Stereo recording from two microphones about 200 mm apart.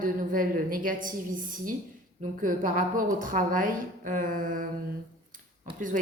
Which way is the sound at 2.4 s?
40° right (ahead or behind).